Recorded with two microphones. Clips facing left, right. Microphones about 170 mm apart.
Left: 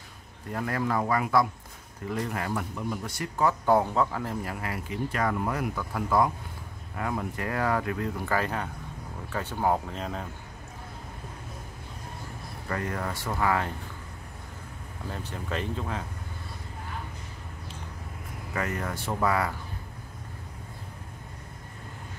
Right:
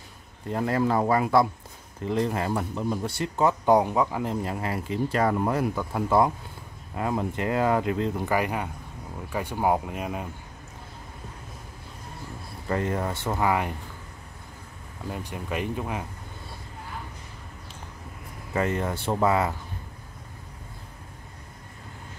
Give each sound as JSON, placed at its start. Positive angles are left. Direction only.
{"t": 0.5, "sound": "speech", "side_deg": -25}
{"t": 12.6, "sound": "speech", "side_deg": -25}
{"t": 15.0, "sound": "speech", "side_deg": -10}
{"t": 18.5, "sound": "speech", "side_deg": -25}